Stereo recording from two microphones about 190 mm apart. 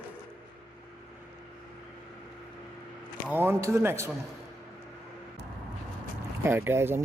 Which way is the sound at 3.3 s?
10° right (ahead or behind).